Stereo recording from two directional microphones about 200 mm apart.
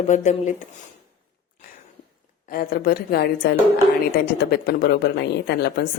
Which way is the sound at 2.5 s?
45° left (ahead or behind).